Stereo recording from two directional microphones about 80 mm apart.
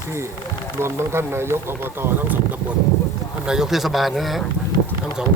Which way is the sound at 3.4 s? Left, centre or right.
Centre.